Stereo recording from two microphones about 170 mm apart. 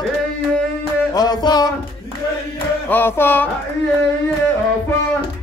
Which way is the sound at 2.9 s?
10° left (ahead or behind).